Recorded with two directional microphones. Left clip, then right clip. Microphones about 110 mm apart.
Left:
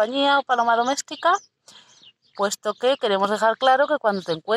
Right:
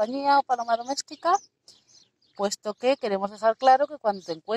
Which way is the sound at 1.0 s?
10° left (ahead or behind).